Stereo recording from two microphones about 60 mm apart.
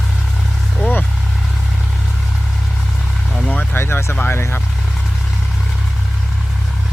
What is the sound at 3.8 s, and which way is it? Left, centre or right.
Vehicle, left.